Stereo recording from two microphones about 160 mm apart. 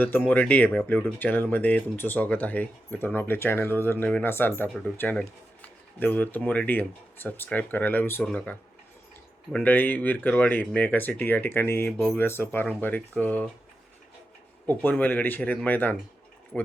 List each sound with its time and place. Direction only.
0.0 s speech: 10° left (ahead or behind)
14.8 s speech: 10° left (ahead or behind)